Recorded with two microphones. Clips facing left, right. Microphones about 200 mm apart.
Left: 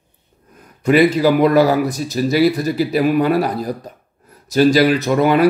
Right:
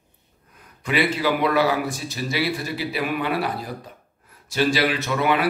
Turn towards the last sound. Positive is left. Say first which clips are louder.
# left 8 dB
turn(degrees=40)  # may be behind; listen again after turning